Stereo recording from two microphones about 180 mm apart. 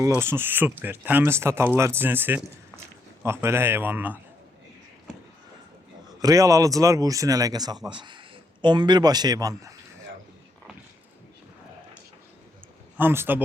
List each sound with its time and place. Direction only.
0.2 s speech: 15° right (ahead or behind)
6.1 s speech: 20° right (ahead or behind)
13.0 s speech: 10° right (ahead or behind)